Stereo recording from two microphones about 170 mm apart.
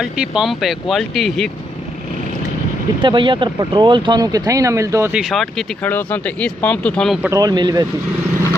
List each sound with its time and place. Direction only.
0.0 s speech: 5° right (ahead or behind)
3.0 s speech: 30° right (ahead or behind)
5.1 s speech: centre (ahead or behind)
7.2 s speech: 20° right (ahead or behind)